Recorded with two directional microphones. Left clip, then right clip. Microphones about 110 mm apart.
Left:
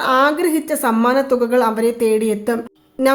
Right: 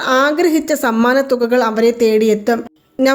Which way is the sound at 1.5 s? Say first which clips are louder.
Right 3 dB; 30° right (ahead or behind).